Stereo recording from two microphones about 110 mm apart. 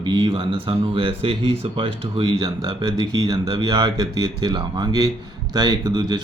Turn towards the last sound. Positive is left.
turn(degrees=-40)  # may be behind; listen again after turning